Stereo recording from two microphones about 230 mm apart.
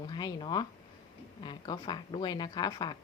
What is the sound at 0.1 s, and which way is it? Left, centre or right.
Speech, centre.